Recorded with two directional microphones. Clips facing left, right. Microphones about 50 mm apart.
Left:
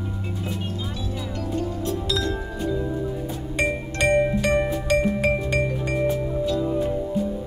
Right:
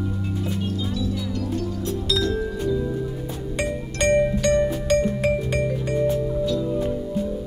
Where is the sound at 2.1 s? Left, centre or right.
Left.